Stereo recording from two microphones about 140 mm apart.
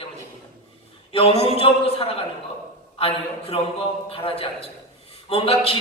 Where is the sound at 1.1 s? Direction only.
45° left (ahead or behind).